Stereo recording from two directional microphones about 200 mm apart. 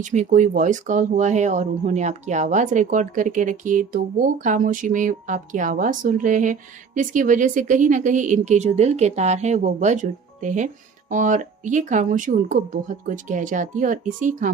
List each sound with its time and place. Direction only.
0.0 s speech: 40° right (ahead or behind)